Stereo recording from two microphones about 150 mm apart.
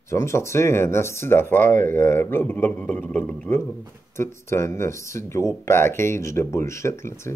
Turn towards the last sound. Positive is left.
turn(degrees=20)  # may be behind; listen again after turning